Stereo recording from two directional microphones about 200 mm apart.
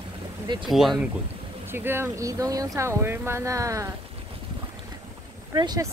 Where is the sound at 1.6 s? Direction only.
10° right (ahead or behind).